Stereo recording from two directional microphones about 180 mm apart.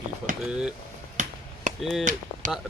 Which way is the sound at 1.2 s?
45° right (ahead or behind).